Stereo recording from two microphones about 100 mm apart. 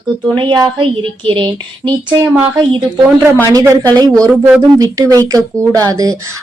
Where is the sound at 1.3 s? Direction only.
55° right (ahead or behind).